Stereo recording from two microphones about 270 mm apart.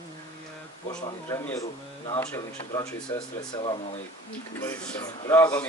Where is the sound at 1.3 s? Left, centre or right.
Centre.